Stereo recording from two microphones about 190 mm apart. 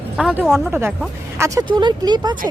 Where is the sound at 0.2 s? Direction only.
5° right (ahead or behind).